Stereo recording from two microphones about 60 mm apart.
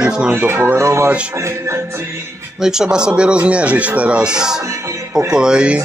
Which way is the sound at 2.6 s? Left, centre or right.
Centre.